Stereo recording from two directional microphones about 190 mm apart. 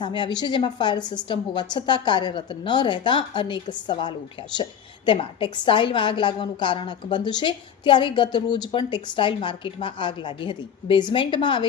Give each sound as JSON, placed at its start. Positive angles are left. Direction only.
{"t": 0.0, "sound": "a woman's voice", "side_deg": 25}